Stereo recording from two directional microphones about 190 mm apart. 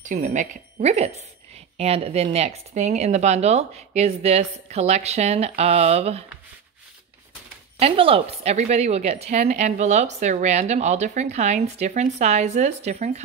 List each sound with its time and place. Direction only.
0.0 s speech: 40° right (ahead or behind)
7.8 s speech: 30° right (ahead or behind)